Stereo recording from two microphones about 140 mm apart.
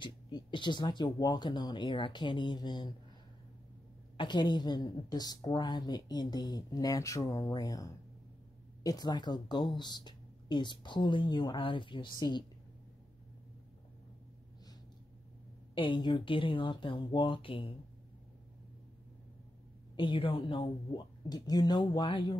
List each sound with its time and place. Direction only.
0.0 s speech: 35° left (ahead or behind)
4.2 s a woman's voice: 35° left (ahead or behind)
15.7 s speech: 35° left (ahead or behind)
20.0 s speech: 40° left (ahead or behind)